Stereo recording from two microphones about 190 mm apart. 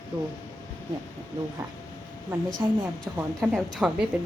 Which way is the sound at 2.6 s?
15° right (ahead or behind).